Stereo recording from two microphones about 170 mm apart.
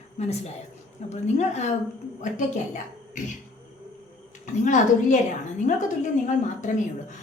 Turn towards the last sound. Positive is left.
turn(degrees=45)  # may be behind; listen again after turning